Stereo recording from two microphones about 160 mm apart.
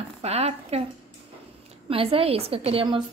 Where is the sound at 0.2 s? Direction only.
40° right (ahead or behind).